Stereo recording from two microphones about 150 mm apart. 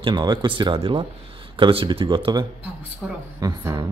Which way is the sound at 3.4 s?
25° right (ahead or behind).